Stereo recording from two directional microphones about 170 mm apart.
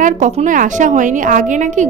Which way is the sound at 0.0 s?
45° right (ahead or behind).